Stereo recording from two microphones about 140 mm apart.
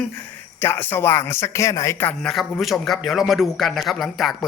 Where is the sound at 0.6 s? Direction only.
15° left (ahead or behind).